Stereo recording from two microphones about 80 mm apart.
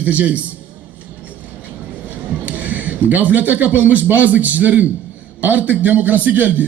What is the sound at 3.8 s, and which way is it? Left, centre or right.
A man's voice, right.